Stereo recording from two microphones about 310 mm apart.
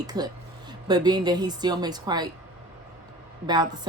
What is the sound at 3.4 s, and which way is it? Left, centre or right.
Speech, centre.